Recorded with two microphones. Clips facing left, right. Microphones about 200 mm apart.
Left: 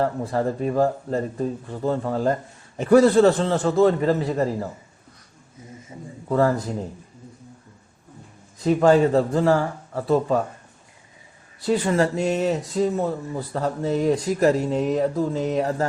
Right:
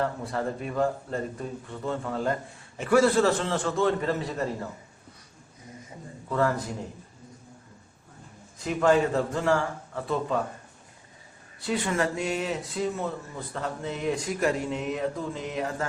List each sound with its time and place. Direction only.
0.0 s speech: 35° left (ahead or behind)
6.2 s speech: 35° left (ahead or behind)
8.6 s speech: 35° left (ahead or behind)
11.6 s speech: 35° left (ahead or behind)